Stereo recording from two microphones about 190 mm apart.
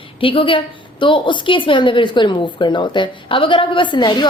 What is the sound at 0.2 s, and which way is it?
A woman's voice, 30° left (ahead or behind).